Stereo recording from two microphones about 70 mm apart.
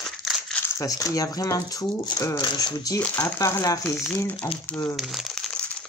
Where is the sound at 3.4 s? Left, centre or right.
Left.